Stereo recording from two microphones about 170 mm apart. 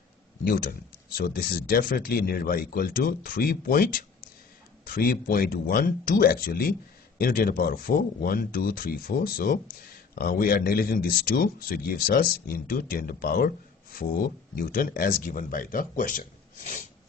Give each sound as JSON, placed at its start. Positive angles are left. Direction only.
{"t": 0.4, "sound": "speech", "side_deg": 60}